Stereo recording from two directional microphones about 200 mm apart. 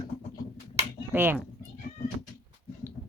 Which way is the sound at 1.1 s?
10° right (ahead or behind).